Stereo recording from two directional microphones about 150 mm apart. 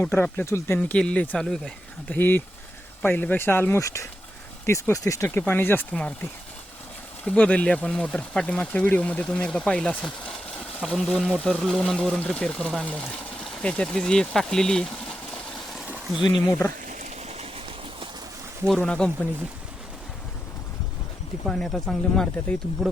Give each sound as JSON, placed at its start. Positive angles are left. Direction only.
{"t": 0.0, "sound": "speech", "side_deg": 15}
{"t": 7.3, "sound": "speech", "side_deg": 10}
{"t": 15.9, "sound": "a sound", "side_deg": -5}
{"t": 16.5, "sound": "speech", "side_deg": 15}
{"t": 16.8, "sound": "a sound", "side_deg": -60}
{"t": 18.7, "sound": "speech", "side_deg": 5}
{"t": 21.4, "sound": "speech", "side_deg": 0}